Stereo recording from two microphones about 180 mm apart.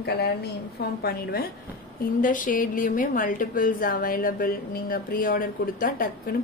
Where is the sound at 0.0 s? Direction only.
65° left (ahead or behind).